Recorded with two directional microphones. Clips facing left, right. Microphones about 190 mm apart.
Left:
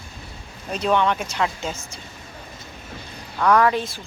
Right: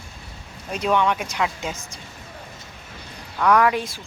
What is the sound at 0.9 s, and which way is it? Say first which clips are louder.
Speech: even; 10° right (ahead or behind).